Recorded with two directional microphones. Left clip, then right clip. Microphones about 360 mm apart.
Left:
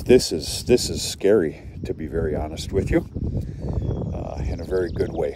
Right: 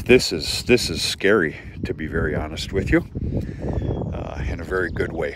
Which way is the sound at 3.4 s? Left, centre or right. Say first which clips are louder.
Right 4 dB; right.